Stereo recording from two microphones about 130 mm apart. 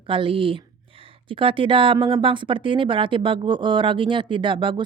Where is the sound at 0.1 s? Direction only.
40° right (ahead or behind).